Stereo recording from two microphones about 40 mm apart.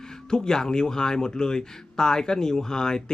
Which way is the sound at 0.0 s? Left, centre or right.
Centre.